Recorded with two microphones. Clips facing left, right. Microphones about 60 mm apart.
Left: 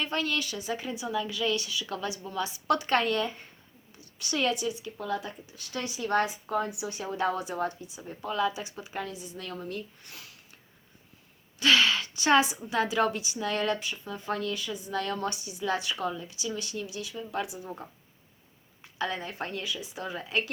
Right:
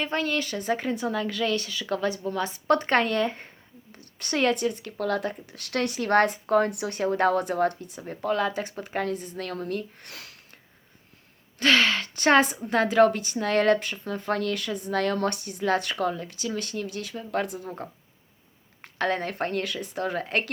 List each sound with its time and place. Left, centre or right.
0.0 s speech: right
11.6 s speech: right